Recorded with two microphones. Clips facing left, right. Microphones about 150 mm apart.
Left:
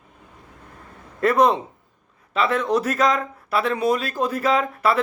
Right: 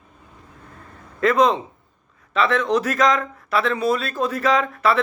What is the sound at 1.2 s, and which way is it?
A man's voice, 10° left (ahead or behind).